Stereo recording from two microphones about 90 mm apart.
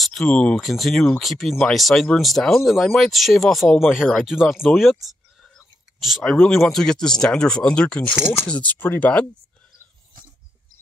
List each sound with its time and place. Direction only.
0.0 s speech: 5° left (ahead or behind)
5.0 s whispering: centre (ahead or behind)
6.4 s speech: centre (ahead or behind); by 9.2 s 20° left (ahead or behind)